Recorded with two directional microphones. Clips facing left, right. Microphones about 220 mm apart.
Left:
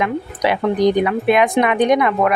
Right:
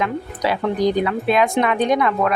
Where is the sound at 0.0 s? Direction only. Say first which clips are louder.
Left 3 dB; 15° left (ahead or behind).